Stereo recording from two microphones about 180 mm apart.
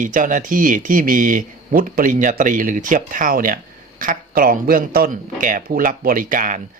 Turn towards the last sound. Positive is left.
turn(degrees=-50)  # may be behind; listen again after turning